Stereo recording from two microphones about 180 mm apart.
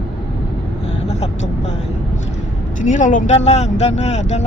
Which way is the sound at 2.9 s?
45° left (ahead or behind).